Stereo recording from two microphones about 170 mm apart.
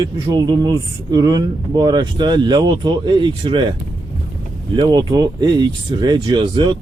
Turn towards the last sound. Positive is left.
turn(degrees=-30)  # may be behind; listen again after turning